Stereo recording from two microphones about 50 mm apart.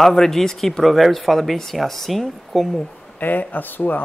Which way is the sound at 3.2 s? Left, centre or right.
Left.